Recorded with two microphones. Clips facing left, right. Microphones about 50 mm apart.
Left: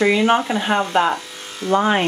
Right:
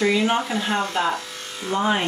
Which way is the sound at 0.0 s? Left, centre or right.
Left.